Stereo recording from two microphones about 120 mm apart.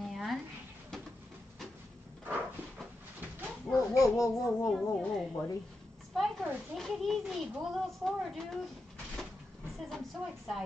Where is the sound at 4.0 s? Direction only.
30° left (ahead or behind).